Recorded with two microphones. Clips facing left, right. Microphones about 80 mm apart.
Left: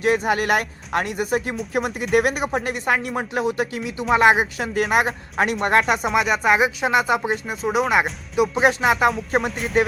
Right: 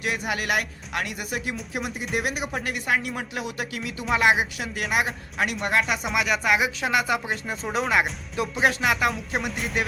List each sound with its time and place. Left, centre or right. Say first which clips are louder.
0.0 s speech: left 8 dB; left
1.7 s speech: left 10 dB; left
2.5 s speech: left 4 dB; left
6.1 s speech: left 4 dB; left
7.4 s speech: left 5 dB; centre
8.6 s speech: left 3 dB; left
9.4 s music: left 4 dB; centre